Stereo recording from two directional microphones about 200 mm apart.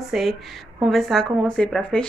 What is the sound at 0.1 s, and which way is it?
Speech, centre (ahead or behind).